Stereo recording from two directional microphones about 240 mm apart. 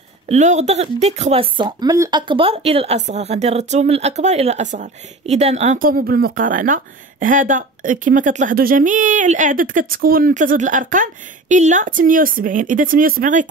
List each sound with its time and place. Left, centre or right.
0.3 s speech: right